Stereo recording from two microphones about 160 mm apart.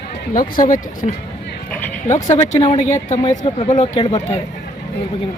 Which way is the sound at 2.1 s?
45° left (ahead or behind).